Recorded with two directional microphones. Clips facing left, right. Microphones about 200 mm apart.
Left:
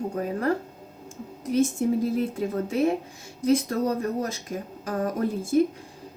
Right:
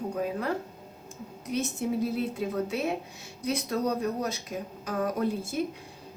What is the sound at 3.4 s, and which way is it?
Speech, 50° left (ahead or behind).